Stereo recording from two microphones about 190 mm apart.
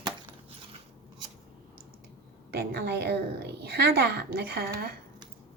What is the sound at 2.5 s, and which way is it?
A woman's voice, 55° right (ahead or behind).